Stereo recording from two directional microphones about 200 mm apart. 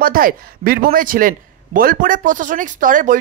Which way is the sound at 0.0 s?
45° right (ahead or behind).